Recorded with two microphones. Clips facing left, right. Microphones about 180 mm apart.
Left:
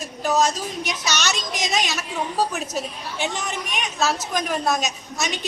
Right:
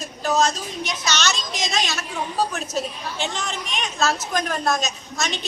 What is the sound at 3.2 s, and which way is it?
A man's voice, 10° left (ahead or behind).